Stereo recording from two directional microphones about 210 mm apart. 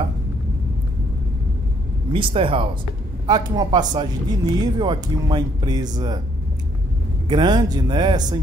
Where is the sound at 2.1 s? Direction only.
25° right (ahead or behind).